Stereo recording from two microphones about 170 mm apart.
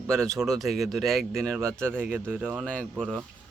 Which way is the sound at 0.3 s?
Centre (ahead or behind).